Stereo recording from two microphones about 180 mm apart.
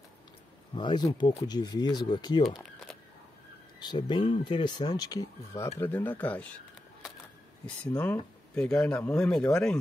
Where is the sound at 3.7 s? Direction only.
25° left (ahead or behind); by 6.4 s 10° left (ahead or behind).